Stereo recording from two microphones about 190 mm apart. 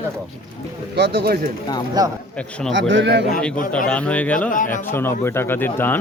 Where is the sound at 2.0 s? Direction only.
20° right (ahead or behind).